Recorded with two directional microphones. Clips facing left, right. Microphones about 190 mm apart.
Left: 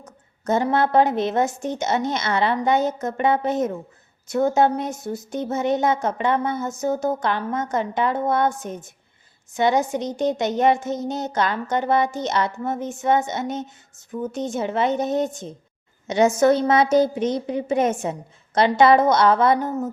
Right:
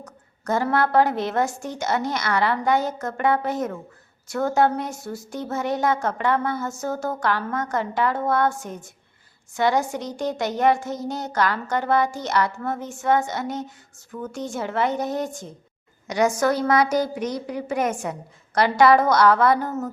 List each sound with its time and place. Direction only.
0.0 s a woman's voice: 20° left (ahead or behind)